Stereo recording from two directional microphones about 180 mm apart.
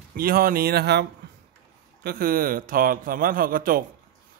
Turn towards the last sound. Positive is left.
turn(degrees=-50)  # may be behind; listen again after turning